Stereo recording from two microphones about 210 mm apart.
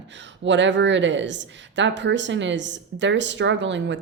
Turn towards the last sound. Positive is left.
turn(degrees=-60)  # may be behind; listen again after turning